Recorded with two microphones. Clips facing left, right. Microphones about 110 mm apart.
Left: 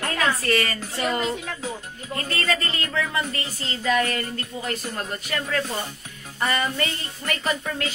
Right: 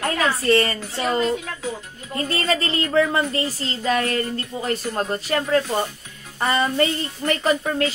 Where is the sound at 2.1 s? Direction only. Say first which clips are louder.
Right 4 dB; 30° right (ahead or behind).